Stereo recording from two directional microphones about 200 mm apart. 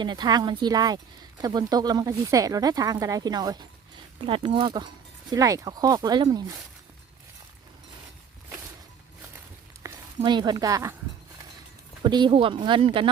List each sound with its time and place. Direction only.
0.0 s speech: 20° right (ahead or behind)
9.8 s a sound: 20° right (ahead or behind)
10.2 s speech: 20° right (ahead or behind)
12.0 s speech: 25° right (ahead or behind)